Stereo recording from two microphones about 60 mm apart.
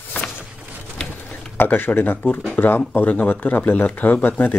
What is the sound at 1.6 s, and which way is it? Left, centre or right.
Speech, left.